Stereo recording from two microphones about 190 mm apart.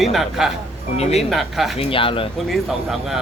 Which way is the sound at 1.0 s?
35° left (ahead or behind).